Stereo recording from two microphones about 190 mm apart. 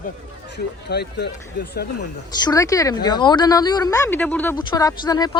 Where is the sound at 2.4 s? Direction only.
20° left (ahead or behind).